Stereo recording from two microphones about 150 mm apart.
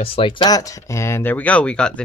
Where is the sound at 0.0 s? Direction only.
35° left (ahead or behind).